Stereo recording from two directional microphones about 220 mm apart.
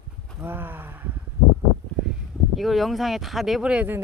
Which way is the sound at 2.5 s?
Centre (ahead or behind).